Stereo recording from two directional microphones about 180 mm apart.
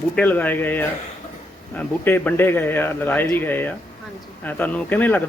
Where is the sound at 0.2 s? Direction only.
10° left (ahead or behind).